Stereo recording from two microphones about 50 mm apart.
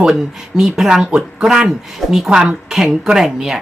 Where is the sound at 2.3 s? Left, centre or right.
Centre.